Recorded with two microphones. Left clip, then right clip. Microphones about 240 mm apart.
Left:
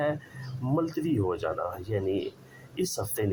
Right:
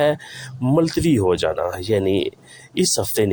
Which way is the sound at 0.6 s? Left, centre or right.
Right.